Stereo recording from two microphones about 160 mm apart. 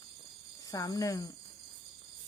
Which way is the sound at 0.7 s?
20° left (ahead or behind).